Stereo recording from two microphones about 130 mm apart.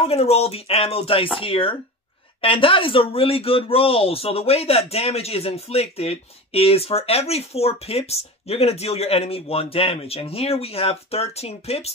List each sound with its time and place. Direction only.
0.0 s speech: 50° left (ahead or behind)